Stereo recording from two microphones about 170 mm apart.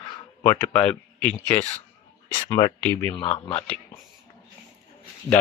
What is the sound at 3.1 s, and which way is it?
Speech, 35° left (ahead or behind).